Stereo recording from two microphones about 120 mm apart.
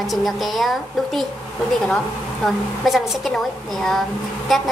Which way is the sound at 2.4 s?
Centre (ahead or behind).